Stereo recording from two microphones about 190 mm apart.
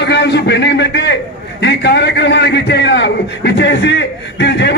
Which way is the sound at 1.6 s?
65° left (ahead or behind).